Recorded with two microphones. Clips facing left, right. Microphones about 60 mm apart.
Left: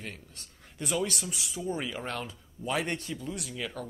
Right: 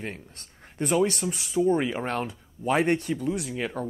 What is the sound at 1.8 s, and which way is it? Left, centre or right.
Speech, right.